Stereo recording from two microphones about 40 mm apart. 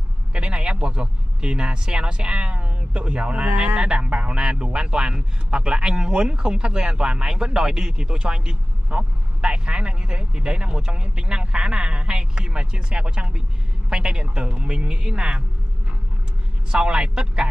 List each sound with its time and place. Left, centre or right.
0.3 s speech: right
16.7 s speech: right